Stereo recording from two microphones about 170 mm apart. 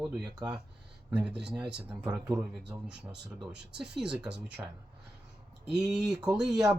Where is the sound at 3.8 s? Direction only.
5° right (ahead or behind).